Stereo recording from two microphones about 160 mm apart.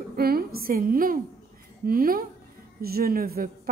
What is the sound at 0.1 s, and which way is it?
A woman's voice, 70° right (ahead or behind).